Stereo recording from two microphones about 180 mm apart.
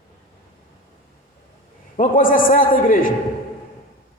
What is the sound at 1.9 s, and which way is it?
A man's voice, 50° left (ahead or behind).